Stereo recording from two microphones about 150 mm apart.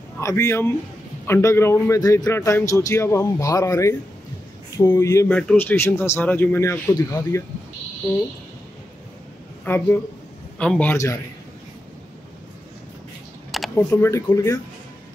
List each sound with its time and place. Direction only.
0.2 s a man's voice: 20° left (ahead or behind)
5.3 s a man's voice: 10° left (ahead or behind)
9.7 s a man's voice: 15° left (ahead or behind)
13.7 s a man's voice: 15° left (ahead or behind)